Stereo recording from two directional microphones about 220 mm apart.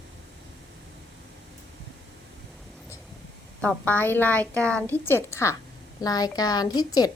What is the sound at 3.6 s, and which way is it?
A woman's voice, 5° left (ahead or behind).